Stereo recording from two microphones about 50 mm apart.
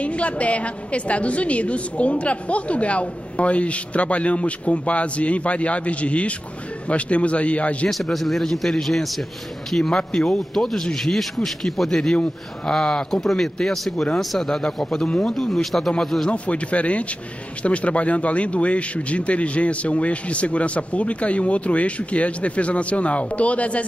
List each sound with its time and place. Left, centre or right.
0.0 s a woman's voice: left
7.9 s speech: centre
9.8 s speech: centre
10.5 s speech: centre
15.0 s a woman's voice: centre
15.3 s speech: centre
16.3 s a woman's voice: left